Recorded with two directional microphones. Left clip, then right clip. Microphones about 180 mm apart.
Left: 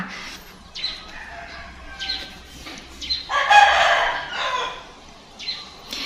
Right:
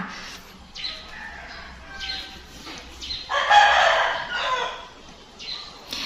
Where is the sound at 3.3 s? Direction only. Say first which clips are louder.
Left 2 dB; 55° left (ahead or behind).